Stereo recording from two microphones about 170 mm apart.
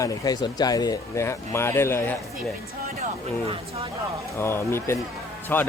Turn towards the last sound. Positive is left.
turn(degrees=10)  # may be behind; listen again after turning